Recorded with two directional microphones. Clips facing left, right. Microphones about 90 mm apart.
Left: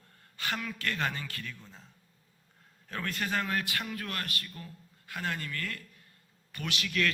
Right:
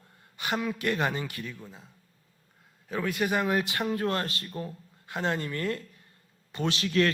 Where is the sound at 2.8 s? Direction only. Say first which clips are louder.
Right 6 dB; 5° right (ahead or behind).